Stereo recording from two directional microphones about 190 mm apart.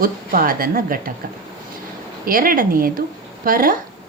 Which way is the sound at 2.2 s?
50° right (ahead or behind).